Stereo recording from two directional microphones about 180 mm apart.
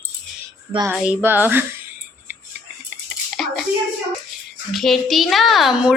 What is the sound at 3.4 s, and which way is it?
Hands, centre (ahead or behind).